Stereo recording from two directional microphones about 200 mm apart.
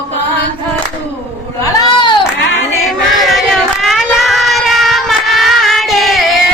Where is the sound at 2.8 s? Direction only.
Centre (ahead or behind).